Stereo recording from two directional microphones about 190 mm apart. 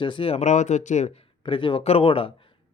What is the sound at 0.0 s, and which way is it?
Speech, 25° left (ahead or behind).